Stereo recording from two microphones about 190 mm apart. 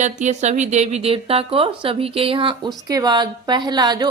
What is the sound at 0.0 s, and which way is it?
Speech, 40° right (ahead or behind).